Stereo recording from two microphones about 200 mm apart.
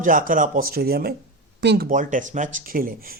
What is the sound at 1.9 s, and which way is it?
A man's voice, 40° right (ahead or behind).